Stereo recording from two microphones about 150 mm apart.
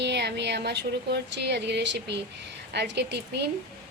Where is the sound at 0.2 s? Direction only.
90° right.